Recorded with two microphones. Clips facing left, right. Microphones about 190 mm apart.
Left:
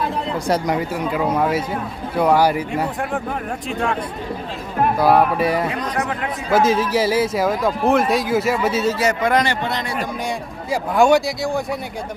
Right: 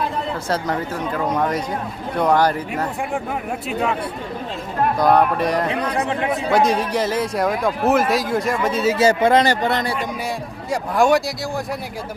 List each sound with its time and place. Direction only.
0.4 s speech: 15° left (ahead or behind)
3.7 s speech: 5° right (ahead or behind)
4.9 s speech: 5° left (ahead or behind)
9.0 s speech: 30° right (ahead or behind)
10.7 s speech: centre (ahead or behind)